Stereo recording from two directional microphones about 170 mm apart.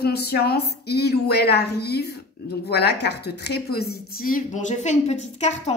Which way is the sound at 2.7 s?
70° left (ahead or behind).